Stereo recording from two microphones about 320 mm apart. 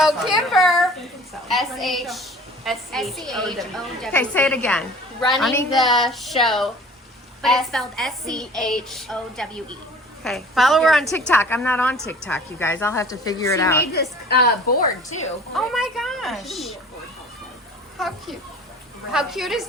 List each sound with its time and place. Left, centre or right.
0.0 s a sound: centre
1.5 s a woman's voice: centre
13.9 s a woman's voice: left
15.5 s a woman's voice: centre
17.9 s a child's voice: centre